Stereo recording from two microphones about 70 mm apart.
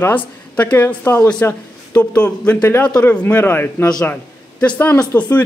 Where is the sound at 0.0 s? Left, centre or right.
Left.